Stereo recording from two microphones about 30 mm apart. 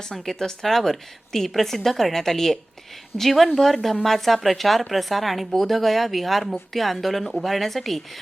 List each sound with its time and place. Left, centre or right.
0.3 s a woman's voice: centre